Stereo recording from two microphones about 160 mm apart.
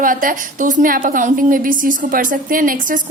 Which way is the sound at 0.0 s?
60° right (ahead or behind).